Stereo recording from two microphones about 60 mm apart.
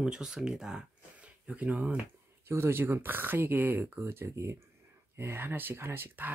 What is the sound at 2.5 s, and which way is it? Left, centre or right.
Speech, right.